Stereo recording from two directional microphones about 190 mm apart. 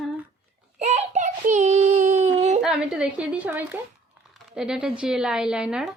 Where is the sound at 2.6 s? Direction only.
5° right (ahead or behind).